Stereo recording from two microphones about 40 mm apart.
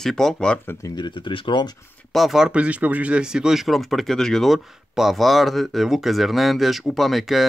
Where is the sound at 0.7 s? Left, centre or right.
Left.